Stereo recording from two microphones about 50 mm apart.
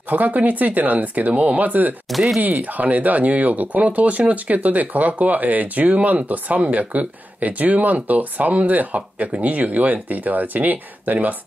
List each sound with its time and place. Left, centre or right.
0.1 s speech: right
2.0 s speech: centre
2.4 s speech: right